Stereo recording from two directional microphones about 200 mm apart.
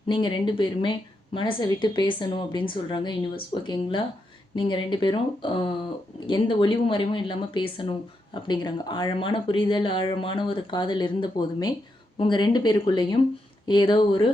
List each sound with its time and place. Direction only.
0.1 s speech: 25° left (ahead or behind)